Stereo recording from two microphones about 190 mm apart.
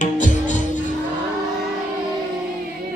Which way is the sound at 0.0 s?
40° left (ahead or behind).